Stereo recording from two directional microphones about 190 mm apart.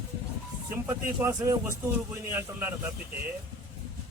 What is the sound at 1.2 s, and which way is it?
A man's voice, 15° right (ahead or behind).